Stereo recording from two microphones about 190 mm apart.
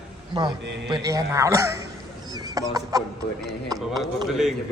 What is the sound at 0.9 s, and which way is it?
A man's voice, 20° right (ahead or behind).